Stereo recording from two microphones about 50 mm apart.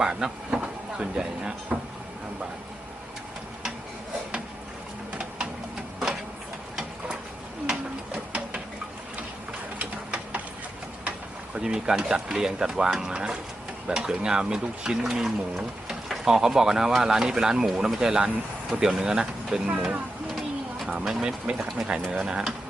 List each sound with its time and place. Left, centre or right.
0.0 s speech: centre
7.7 s a sound: right
9.7 s sewing machine: right
11.5 s speech: centre
19.7 s speech: right
20.3 s a sound: centre
21.0 s speech: centre
21.6 s speech: centre
22.1 s speech: centre